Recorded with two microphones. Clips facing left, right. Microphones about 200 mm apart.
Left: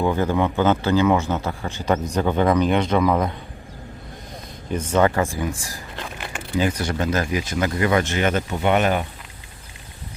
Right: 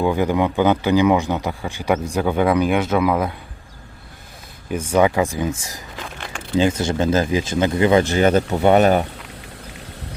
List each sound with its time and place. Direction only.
0.0 s a man's voice: 15° right (ahead or behind)
4.7 s a man's voice: 10° right (ahead or behind)
6.0 s a sound: 5° left (ahead or behind)
6.6 s speech: 25° right (ahead or behind)